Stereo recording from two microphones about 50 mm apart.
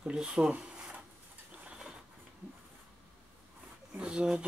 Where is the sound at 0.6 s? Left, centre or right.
Centre.